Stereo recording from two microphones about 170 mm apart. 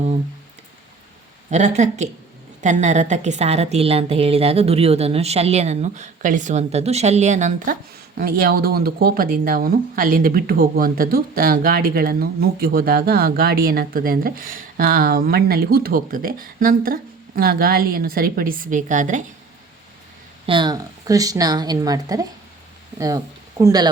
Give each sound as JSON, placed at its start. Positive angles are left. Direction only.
{"t": 1.5, "sound": "a woman's voice", "side_deg": -45}
{"t": 8.2, "sound": "speech", "side_deg": -60}
{"t": 20.5, "sound": "speech", "side_deg": -25}